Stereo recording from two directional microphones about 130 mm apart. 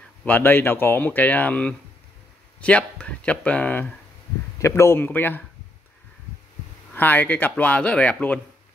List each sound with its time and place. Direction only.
0.2 s speech: 15° left (ahead or behind)
4.6 s speech: 20° left (ahead or behind)
6.9 s speech: 15° left (ahead or behind)